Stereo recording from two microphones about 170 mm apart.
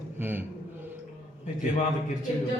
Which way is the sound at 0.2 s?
10° right (ahead or behind).